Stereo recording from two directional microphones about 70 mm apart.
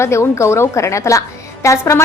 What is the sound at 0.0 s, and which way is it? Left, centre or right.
A woman's voice, left.